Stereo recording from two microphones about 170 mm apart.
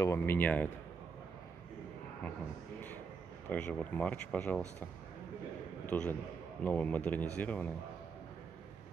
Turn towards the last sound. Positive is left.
turn(degrees=10)  # may be behind; listen again after turning